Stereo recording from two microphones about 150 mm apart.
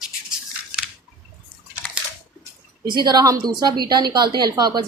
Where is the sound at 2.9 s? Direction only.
30° right (ahead or behind).